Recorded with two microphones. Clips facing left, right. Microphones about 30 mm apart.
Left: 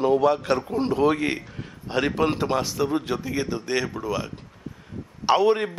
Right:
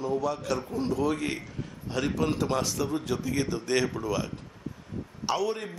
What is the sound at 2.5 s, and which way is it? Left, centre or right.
A man's voice, centre.